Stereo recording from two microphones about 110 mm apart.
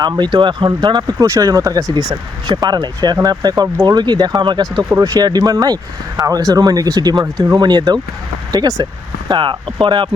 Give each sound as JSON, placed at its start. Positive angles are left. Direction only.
{"t": 0.2, "sound": "speech", "side_deg": -45}
{"t": 9.3, "sound": "speech", "side_deg": -45}